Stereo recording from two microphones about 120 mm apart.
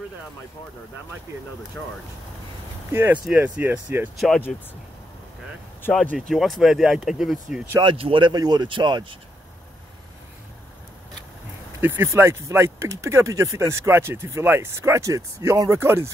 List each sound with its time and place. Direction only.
2.9 s speech: 15° right (ahead or behind)
4.5 s speech: centre (ahead or behind)
6.1 s speech: centre (ahead or behind)
7.8 s speech: 45° right (ahead or behind)
11.8 s speech: 20° right (ahead or behind)